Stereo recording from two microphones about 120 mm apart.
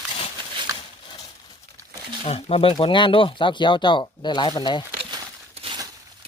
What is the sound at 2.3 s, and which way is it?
Speech, 55° left (ahead or behind).